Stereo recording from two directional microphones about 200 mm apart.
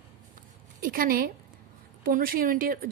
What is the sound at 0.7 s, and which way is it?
A woman's voice, 45° right (ahead or behind).